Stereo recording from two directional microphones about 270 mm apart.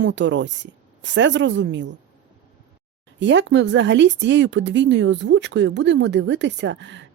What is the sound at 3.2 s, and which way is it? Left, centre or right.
Speech, right.